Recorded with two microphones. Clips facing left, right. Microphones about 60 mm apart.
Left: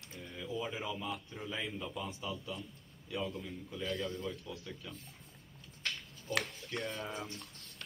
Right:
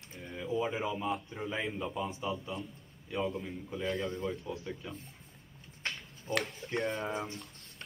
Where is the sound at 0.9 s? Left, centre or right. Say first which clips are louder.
Right 6 dB; right.